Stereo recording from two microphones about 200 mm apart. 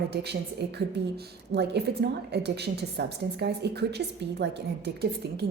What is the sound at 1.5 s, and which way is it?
A woman's voice, 55° right (ahead or behind).